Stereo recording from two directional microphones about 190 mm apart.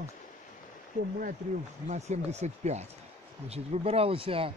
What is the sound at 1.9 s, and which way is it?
Speech, 35° right (ahead or behind).